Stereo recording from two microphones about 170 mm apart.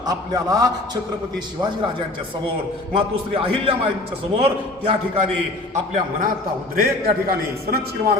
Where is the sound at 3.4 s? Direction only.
30° right (ahead or behind).